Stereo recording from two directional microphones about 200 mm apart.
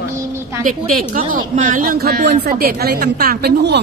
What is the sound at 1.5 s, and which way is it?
A woman's voice, 40° right (ahead or behind).